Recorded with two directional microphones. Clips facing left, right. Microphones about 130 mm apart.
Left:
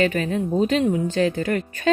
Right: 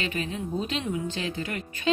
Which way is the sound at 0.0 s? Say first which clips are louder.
Left 10 dB; 45° left (ahead or behind).